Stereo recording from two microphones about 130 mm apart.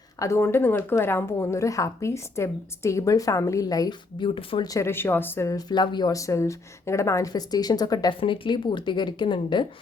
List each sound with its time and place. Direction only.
0.2 s speech: 20° left (ahead or behind); by 4.7 s 40° left (ahead or behind)
4.7 s a woman's voice: 20° left (ahead or behind); by 9.6 s 35° left (ahead or behind)